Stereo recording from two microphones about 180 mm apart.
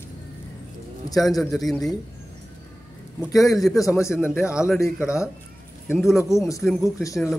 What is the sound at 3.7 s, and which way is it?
Speech, 15° left (ahead or behind).